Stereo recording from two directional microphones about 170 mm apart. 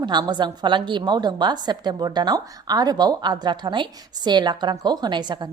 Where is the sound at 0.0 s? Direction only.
25° right (ahead or behind).